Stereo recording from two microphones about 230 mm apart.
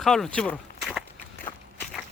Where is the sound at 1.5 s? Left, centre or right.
Left.